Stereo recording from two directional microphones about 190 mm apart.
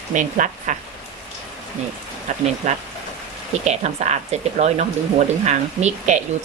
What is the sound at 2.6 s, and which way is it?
Speech, 40° right (ahead or behind).